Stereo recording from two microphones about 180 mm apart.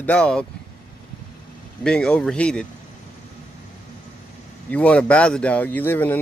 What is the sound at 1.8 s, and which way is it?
Speech, 5° left (ahead or behind).